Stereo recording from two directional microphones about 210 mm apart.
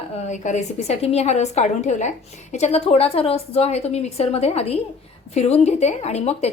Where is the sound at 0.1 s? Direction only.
35° left (ahead or behind).